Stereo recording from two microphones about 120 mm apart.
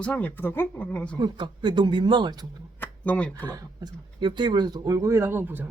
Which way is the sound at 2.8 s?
10° left (ahead or behind).